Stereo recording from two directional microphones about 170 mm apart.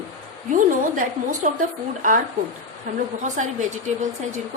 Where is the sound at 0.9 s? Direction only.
50° right (ahead or behind).